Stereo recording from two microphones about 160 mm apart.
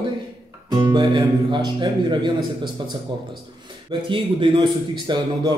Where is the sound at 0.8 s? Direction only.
30° right (ahead or behind).